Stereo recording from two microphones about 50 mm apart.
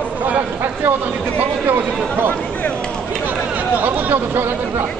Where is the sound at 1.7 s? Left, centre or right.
Right.